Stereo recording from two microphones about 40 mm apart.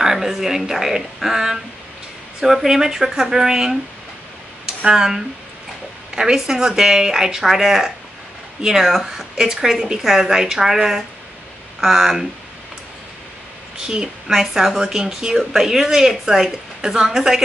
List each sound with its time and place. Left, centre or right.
0.0 s speech: centre
13.7 s a woman's voice: right
14.2 s speech: centre